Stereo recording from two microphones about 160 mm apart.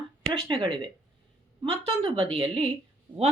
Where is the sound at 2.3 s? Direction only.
30° right (ahead or behind).